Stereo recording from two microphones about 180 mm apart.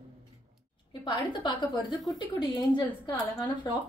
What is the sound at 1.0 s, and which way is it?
Speech, 25° left (ahead or behind).